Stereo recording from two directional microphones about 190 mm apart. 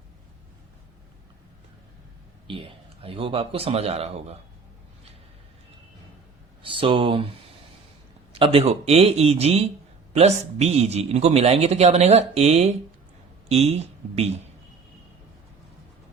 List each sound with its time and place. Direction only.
2.5 s speech: 25° right (ahead or behind)
6.6 s a man's voice: 25° right (ahead or behind)